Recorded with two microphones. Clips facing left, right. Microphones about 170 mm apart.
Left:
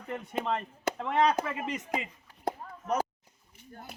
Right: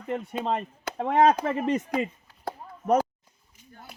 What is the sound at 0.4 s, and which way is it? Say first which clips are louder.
Speech: right 2 dB; 35° right (ahead or behind).